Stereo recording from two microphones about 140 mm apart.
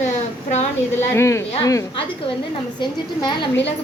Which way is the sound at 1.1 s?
20° left (ahead or behind).